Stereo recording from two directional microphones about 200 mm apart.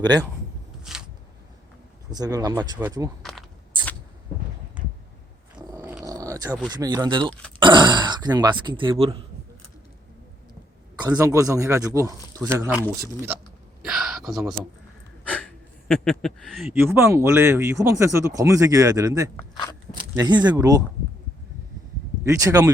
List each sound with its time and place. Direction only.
0.9 s a sound: centre (ahead or behind)
2.0 s speech: 20° right (ahead or behind)
3.2 s biting: centre (ahead or behind)
5.7 s dog: 5° right (ahead or behind)
6.1 s dog: 15° right (ahead or behind)
6.7 s speech: 20° right (ahead or behind)
11.1 s speech: 15° right (ahead or behind)
13.8 s a sound: centre (ahead or behind)
15.9 s speech: 5° left (ahead or behind)
16.7 s speech: 10° right (ahead or behind)
22.2 s speech: 15° right (ahead or behind)